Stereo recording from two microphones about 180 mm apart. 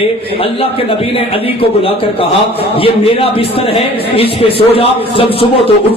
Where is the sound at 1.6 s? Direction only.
30° left (ahead or behind).